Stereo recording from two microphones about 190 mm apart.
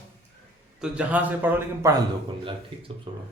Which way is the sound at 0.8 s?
5° right (ahead or behind).